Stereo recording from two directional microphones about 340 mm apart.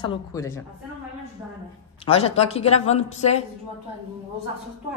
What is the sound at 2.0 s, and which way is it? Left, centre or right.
Speech, centre.